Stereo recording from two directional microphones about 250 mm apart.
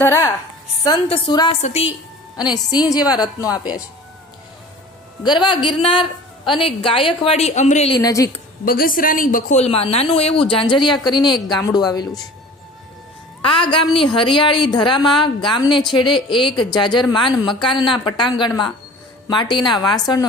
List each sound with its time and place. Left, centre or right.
0.0 s a woman's voice: centre
5.2 s speech: centre
8.6 s a woman's voice: left; by 11.3 s centre
11.3 s speech: centre
11.6 s a woman's voice: centre
13.7 s a woman's voice: centre